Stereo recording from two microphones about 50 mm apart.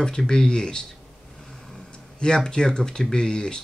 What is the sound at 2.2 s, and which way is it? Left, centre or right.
Speech, centre.